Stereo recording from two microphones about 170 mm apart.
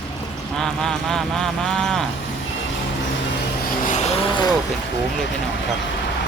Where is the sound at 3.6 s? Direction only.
45° left (ahead or behind).